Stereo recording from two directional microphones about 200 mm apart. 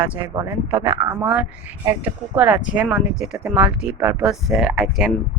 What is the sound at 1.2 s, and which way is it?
Speech, 5° right (ahead or behind).